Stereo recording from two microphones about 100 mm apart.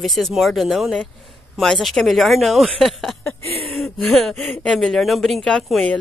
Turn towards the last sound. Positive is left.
turn(degrees=0)  # may be behind; listen again after turning